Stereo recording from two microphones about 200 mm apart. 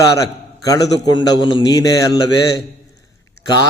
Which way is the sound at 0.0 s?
15° left (ahead or behind).